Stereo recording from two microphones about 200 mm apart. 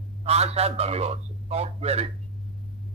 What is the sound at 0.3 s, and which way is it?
Speech, 30° right (ahead or behind).